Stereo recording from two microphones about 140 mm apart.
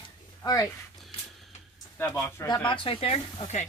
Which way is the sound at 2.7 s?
40° left (ahead or behind).